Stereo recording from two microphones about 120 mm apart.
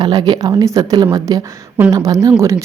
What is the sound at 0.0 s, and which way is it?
Speech, 35° right (ahead or behind).